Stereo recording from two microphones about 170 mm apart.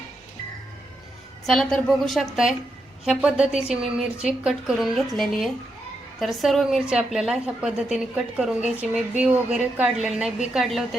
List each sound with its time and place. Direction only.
1.5 s a woman's voice: centre (ahead or behind)